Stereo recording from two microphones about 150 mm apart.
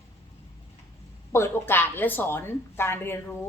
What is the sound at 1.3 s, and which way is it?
Speech, 15° left (ahead or behind).